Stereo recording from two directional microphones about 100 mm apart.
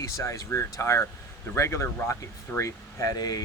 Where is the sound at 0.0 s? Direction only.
30° left (ahead or behind).